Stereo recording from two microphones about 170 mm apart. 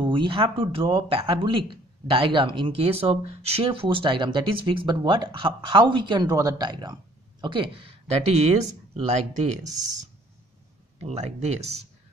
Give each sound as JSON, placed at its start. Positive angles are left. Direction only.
{"t": 0.1, "sound": "speech", "side_deg": -30}